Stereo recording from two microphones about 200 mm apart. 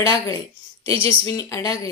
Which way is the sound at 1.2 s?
15° left (ahead or behind).